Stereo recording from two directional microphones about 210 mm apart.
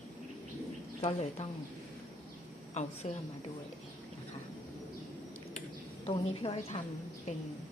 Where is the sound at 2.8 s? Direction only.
30° left (ahead or behind).